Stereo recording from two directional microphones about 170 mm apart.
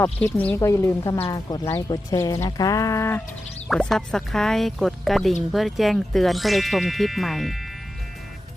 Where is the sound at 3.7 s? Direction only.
5° left (ahead or behind).